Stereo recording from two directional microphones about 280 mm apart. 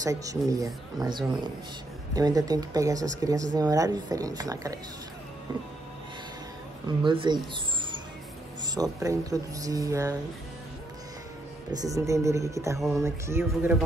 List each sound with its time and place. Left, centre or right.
0.0 s speech: centre
7.1 s speech: centre
8.7 s speech: centre
11.7 s speech: centre